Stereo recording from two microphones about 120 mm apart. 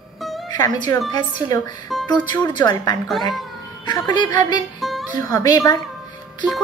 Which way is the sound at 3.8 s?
35° left (ahead or behind).